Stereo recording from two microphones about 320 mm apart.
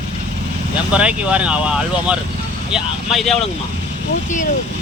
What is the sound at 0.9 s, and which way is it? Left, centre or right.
Speech, centre.